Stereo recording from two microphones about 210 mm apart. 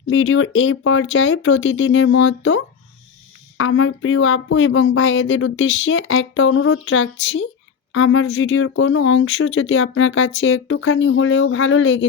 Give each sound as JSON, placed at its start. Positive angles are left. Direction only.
{"t": 0.1, "sound": "speech", "side_deg": 70}